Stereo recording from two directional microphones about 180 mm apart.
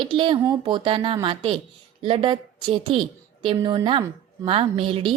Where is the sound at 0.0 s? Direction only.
30° right (ahead or behind).